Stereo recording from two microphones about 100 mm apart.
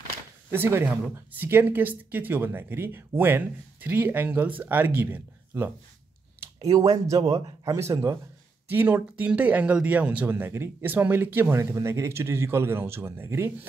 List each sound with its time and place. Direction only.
0.5 s speech: 25° right (ahead or behind)
6.6 s speech: 40° right (ahead or behind)
7.2 s speech: 55° right (ahead or behind)
7.6 s speech: 30° right (ahead or behind)
8.6 s speech: 20° right (ahead or behind)